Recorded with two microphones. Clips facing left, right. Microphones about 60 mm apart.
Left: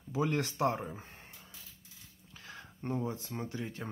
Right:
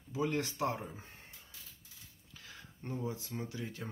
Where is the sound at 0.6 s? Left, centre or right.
Left.